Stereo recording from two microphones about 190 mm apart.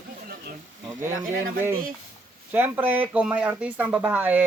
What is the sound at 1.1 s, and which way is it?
Speech, 45° right (ahead or behind).